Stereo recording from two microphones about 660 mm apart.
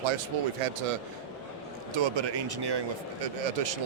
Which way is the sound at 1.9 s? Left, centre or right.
Right.